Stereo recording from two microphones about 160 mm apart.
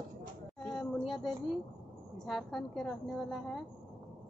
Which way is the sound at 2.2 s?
Centre (ahead or behind).